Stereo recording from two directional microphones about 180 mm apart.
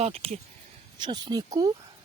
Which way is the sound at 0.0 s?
35° right (ahead or behind).